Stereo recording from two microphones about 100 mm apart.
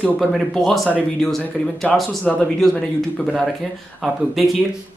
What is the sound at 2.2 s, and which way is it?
Speech, 15° left (ahead or behind).